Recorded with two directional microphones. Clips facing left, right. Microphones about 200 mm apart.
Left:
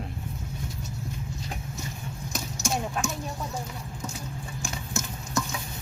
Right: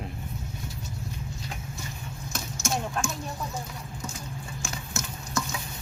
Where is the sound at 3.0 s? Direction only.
5° left (ahead or behind).